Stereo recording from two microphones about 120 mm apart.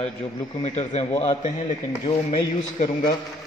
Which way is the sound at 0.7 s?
70° left (ahead or behind).